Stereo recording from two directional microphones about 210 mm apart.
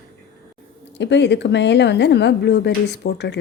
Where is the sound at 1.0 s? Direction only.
55° left (ahead or behind).